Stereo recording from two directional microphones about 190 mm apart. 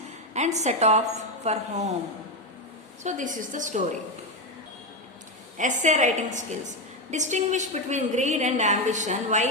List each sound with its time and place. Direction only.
0.3 s a woman's voice: 35° right (ahead or behind)
3.0 s a woman's voice: 40° right (ahead or behind)
5.5 s a woman's voice: 40° right (ahead or behind)